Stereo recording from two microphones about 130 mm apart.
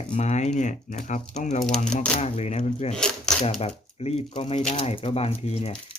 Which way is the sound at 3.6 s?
50° left (ahead or behind).